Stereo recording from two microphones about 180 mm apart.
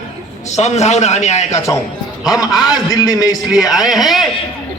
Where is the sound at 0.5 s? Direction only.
40° left (ahead or behind).